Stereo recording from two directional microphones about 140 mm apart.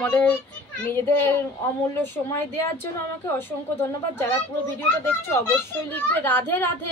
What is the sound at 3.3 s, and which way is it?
Speech, 15° left (ahead or behind).